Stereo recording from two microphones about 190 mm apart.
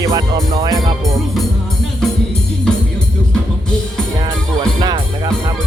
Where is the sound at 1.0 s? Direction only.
Centre (ahead or behind).